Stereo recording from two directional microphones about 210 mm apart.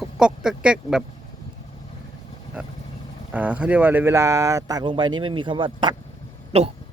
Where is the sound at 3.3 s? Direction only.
5° right (ahead or behind).